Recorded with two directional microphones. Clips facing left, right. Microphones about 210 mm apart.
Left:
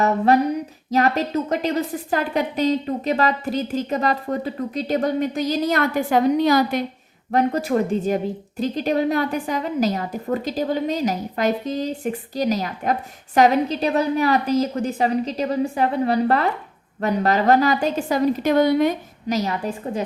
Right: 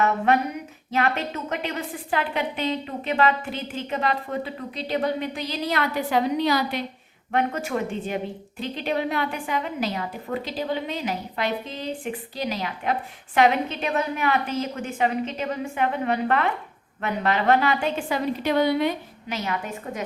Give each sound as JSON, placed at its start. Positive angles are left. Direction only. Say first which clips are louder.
{"t": 0.9, "sound": "a woman's voice", "louder": "left 5 dB", "side_deg": 40}